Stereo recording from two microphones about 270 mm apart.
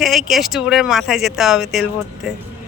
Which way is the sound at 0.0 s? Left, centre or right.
Centre.